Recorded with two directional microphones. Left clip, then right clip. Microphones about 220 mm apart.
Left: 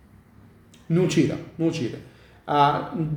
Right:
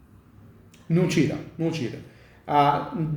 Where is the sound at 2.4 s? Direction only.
5° left (ahead or behind).